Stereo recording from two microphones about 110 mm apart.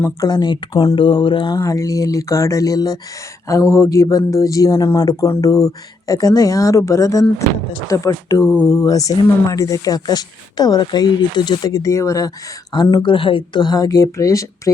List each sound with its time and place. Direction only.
0.2 s speech: 40° left (ahead or behind)
0.7 s speech: 30° left (ahead or behind)
0.9 s speech: 50° left (ahead or behind)
1.5 s speech: 30° left (ahead or behind)
3.4 s mantra: 30° left (ahead or behind)
4.3 s speech: 30° left (ahead or behind)
7.9 s mantra: 30° left (ahead or behind)
8.7 s speech: 30° left (ahead or behind)
12.7 s speech: 45° left (ahead or behind)